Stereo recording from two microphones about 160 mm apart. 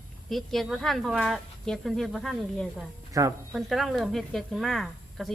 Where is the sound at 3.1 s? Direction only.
20° right (ahead or behind).